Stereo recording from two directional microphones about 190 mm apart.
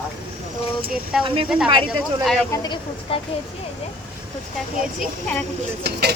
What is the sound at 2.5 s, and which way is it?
Speech, 20° left (ahead or behind).